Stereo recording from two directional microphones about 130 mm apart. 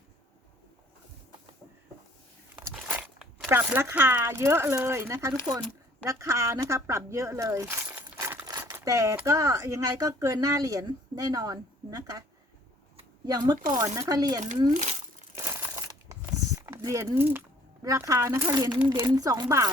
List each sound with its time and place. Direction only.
2.6 s speech: 10° right (ahead or behind)
8.4 s a sound: 30° right (ahead or behind)
9.2 s speech: 25° right (ahead or behind)
13.2 s speech: 30° right (ahead or behind)
15.7 s a sound: 25° right (ahead or behind)
17.8 s speech: 25° right (ahead or behind)